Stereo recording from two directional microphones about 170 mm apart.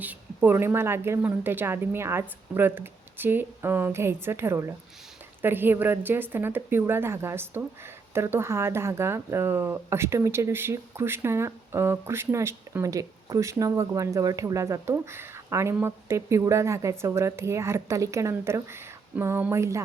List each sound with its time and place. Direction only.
0.0 s speech: 10° right (ahead or behind)